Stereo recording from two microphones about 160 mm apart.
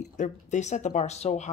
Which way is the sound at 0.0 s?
50° left (ahead or behind).